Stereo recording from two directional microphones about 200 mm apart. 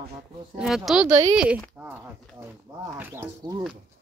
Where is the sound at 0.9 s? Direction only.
5° right (ahead or behind).